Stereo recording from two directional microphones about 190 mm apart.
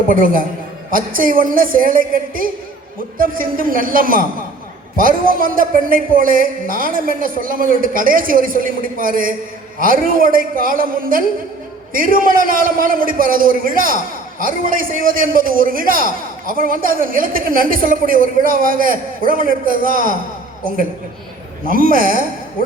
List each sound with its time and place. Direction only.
0.1 s a man's voice: 45° right (ahead or behind)
21.7 s a man's voice: 50° right (ahead or behind)